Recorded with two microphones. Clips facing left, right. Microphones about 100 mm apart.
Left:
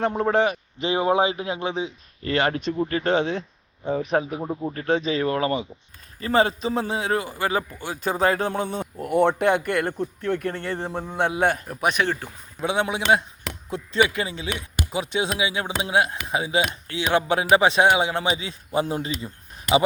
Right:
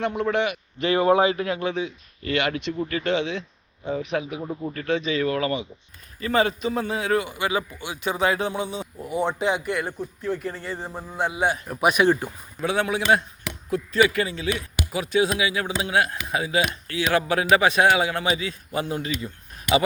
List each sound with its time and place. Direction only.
0.0 s speech: 40° left (ahead or behind)
0.8 s a man's voice: 20° left (ahead or behind); by 4.4 s 40° left (ahead or behind)
4.4 s a man's voice: 30° left (ahead or behind); by 11.6 s 60° left (ahead or behind)
11.7 s speech: 5° right (ahead or behind)
12.6 s a man's voice: 20° left (ahead or behind)